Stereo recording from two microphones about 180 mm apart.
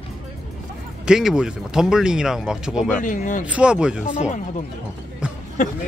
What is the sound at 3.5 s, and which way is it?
Speech, 5° right (ahead or behind).